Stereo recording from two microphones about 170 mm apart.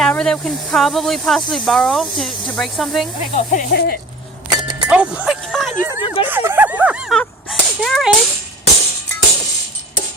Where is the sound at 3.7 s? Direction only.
75° left (ahead or behind).